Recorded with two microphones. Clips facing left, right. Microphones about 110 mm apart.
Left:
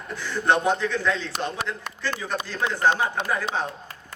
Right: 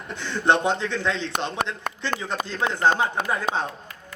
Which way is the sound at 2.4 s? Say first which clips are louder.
Right 1 dB; 20° right (ahead or behind).